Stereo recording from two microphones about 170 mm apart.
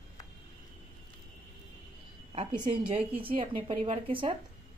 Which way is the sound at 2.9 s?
30° right (ahead or behind).